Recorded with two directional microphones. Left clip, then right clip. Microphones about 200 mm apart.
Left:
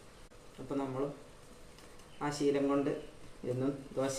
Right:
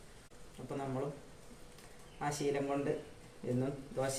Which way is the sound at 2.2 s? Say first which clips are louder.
Left 3 dB; centre (ahead or behind).